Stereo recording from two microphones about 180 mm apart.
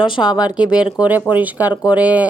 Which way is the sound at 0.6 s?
5° right (ahead or behind).